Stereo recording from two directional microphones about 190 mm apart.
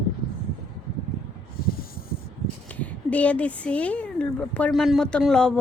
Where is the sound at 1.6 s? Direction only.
50° left (ahead or behind).